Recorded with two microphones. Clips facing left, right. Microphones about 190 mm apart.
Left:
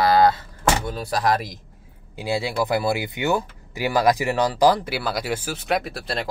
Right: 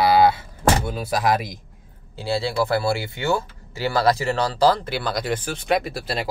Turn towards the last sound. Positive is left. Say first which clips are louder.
# right 1 dB
turn(degrees=-5)  # may be behind; listen again after turning